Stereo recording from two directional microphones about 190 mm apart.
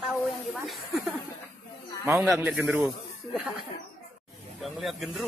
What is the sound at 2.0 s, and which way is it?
Speech, 10° right (ahead or behind).